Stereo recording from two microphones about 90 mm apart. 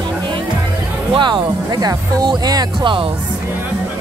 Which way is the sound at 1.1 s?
55° right (ahead or behind).